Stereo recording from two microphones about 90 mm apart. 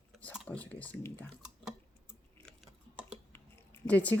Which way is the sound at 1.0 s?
25° left (ahead or behind).